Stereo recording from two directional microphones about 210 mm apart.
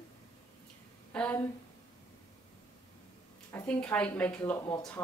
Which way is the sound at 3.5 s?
5° left (ahead or behind).